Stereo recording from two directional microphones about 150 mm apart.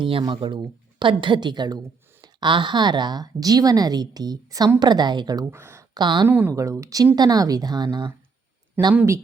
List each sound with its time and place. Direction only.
0.0 s a woman's voice: 35° right (ahead or behind); by 6.0 s 15° right (ahead or behind)
6.0 s a woman's voice: 30° right (ahead or behind)
6.2 s speech: 10° right (ahead or behind); by 8.1 s 30° right (ahead or behind)
8.8 s speech: 15° right (ahead or behind)